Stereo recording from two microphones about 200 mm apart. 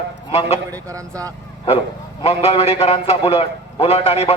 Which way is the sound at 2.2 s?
30° left (ahead or behind).